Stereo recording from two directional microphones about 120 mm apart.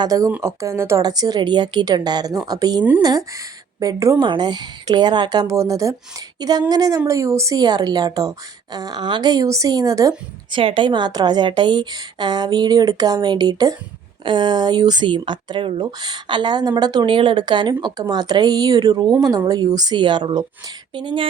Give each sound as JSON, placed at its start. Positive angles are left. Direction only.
{"t": 0.0, "sound": "a woman's voice", "side_deg": -30}
{"t": 4.2, "sound": "a woman's voice", "side_deg": -40}
{"t": 10.5, "sound": "a woman's voice", "side_deg": -45}